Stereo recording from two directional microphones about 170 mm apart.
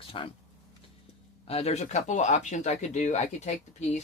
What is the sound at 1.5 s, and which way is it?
Speech, 35° left (ahead or behind).